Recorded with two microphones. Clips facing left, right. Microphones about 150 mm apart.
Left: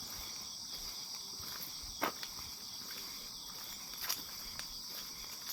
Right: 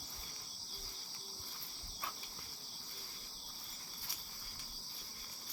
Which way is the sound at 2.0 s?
80° left.